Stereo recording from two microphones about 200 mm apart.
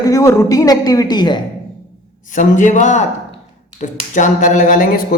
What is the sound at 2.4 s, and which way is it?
Speech, 40° left (ahead or behind).